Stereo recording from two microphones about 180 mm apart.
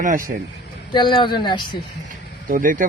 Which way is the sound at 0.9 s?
25° left (ahead or behind).